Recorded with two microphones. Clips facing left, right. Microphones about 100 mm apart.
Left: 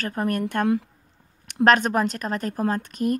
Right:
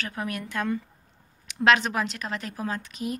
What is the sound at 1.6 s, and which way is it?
A woman's voice, 45° left (ahead or behind).